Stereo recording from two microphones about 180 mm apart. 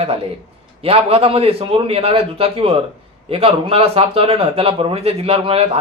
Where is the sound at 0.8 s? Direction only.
30° right (ahead or behind).